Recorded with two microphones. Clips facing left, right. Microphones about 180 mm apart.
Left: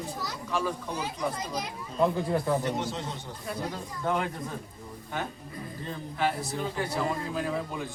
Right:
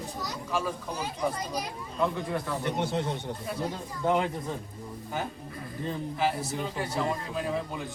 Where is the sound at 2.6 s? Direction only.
60° right (ahead or behind).